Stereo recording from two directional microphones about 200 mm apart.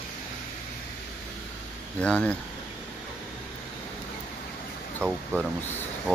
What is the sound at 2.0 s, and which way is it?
Speech, 5° left (ahead or behind).